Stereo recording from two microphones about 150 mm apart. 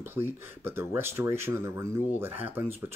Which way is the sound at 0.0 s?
15° right (ahead or behind).